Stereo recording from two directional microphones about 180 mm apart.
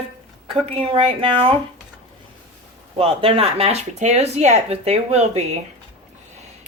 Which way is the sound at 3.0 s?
30° right (ahead or behind).